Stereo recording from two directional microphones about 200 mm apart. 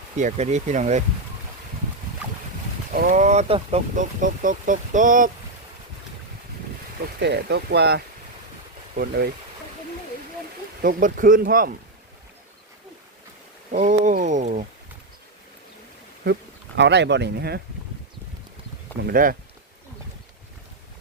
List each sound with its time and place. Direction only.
0.2 s speech: 35° right (ahead or behind)
2.9 s speech: 40° right (ahead or behind)
7.2 s speech: 55° right (ahead or behind)
10.8 s speech: 45° right (ahead or behind)
13.7 s speech: 40° right (ahead or behind)
16.2 s speech: 60° right (ahead or behind)
19.0 s speech: 45° right (ahead or behind)